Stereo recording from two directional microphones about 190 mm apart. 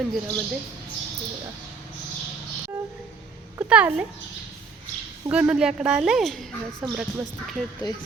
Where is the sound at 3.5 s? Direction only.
5° right (ahead or behind).